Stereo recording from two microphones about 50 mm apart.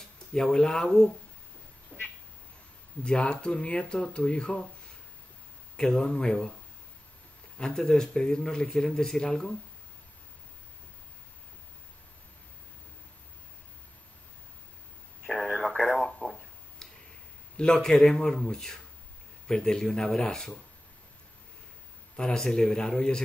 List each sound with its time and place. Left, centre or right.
0.3 s a man's voice: centre
1.9 s a sound: left
3.0 s speech: left
5.8 s a man's voice: centre
7.5 s a man's voice: centre
16.0 s a sound: centre
17.6 s a man's voice: centre
22.1 s a man's voice: centre